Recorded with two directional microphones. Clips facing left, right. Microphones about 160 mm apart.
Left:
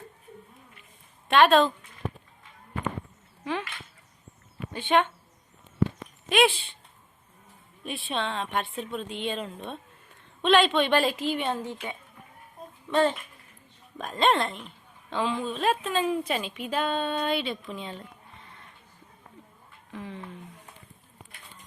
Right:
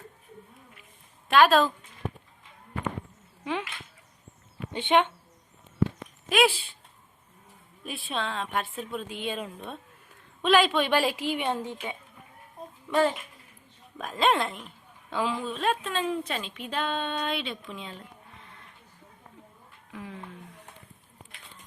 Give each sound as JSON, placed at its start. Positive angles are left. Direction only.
{"t": 1.3, "sound": "a woman's voice", "side_deg": 0}
{"t": 3.4, "sound": "whip", "side_deg": -15}
{"t": 4.7, "sound": "speech", "side_deg": -20}
{"t": 6.2, "sound": "a woman's voice", "side_deg": 0}
{"t": 7.9, "sound": "a woman's voice", "side_deg": 0}
{"t": 18.3, "sound": "a sound", "side_deg": 0}
{"t": 19.9, "sound": "speech", "side_deg": -5}